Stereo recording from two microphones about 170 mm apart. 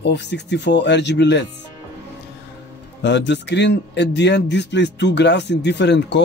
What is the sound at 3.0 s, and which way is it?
A man's voice, 90° left.